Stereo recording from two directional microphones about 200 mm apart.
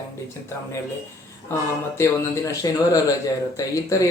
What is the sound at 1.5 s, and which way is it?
A man's voice, 10° left (ahead or behind).